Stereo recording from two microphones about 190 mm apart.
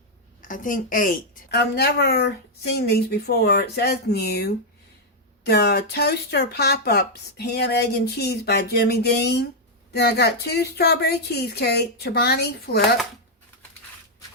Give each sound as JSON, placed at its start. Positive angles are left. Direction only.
{"t": 0.4, "sound": "a woman's voice", "side_deg": 45}